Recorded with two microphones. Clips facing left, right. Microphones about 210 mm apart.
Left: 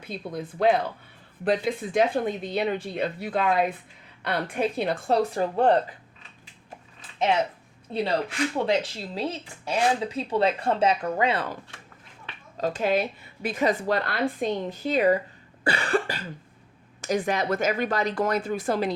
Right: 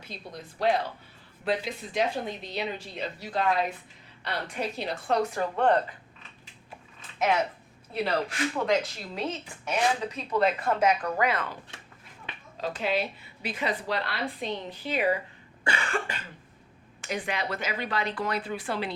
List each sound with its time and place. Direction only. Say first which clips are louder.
0.0 s speech: left 8 dB; 55° left (ahead or behind)
5.0 s speech: left 2 dB; 35° left (ahead or behind)
7.9 s speech: left 3 dB; 25° left (ahead or behind)
12.5 s speech: left 5 dB; 45° left (ahead or behind)
15.6 s cough: left 6 dB; 35° left (ahead or behind)
17.0 s speech: left 7 dB; 45° left (ahead or behind)